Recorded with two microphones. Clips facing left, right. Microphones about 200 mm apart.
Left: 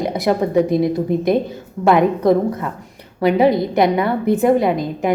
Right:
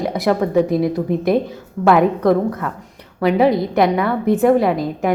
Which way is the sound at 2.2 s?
20° left (ahead or behind).